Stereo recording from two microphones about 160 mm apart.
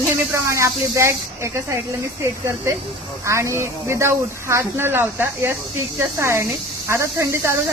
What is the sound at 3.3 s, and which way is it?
Speech, 20° right (ahead or behind).